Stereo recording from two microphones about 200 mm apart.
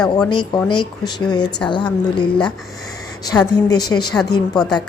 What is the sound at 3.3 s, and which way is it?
A woman's voice, 20° left (ahead or behind).